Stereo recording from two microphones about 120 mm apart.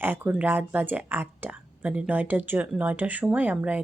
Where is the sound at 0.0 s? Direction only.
15° right (ahead or behind).